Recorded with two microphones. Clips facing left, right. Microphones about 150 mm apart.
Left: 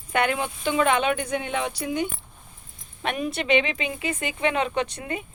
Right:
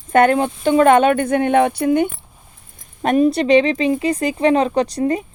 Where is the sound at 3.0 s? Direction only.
40° right (ahead or behind).